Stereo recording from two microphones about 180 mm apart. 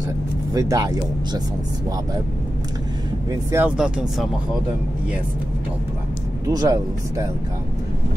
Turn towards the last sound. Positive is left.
turn(degrees=-20)  # may be behind; listen again after turning